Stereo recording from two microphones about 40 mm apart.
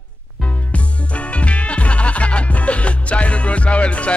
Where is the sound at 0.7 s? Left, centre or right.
Left.